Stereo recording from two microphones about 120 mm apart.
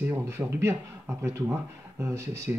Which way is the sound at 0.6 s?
20° right (ahead or behind).